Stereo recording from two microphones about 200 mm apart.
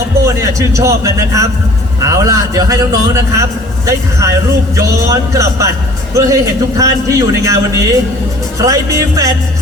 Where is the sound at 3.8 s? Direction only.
15° right (ahead or behind).